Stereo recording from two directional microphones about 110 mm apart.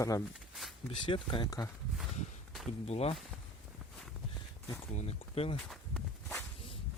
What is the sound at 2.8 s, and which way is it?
Speech, 70° left (ahead or behind).